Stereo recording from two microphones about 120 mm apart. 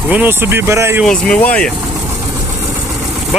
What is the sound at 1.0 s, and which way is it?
Speech, 5° left (ahead or behind).